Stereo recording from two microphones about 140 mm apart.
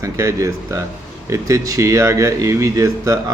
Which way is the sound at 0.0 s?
20° right (ahead or behind).